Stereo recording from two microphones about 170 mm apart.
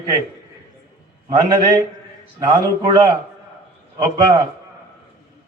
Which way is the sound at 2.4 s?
20° right (ahead or behind).